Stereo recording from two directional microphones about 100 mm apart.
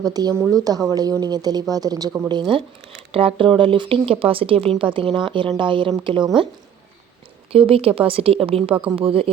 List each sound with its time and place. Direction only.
0.0 s speech: 40° right (ahead or behind)
2.2 s speech: 50° right (ahead or behind)
3.1 s speech: 65° right (ahead or behind)
7.5 s speech: 70° right (ahead or behind)
8.7 s speech: 15° right (ahead or behind)
9.0 s speech: 65° right (ahead or behind)